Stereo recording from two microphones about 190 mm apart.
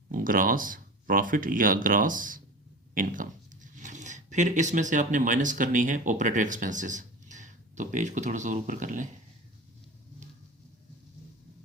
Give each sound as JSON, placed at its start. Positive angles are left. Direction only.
{"t": 0.1, "sound": "speech", "side_deg": -45}